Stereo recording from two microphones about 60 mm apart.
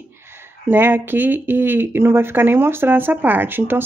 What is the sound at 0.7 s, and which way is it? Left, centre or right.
Speech, right.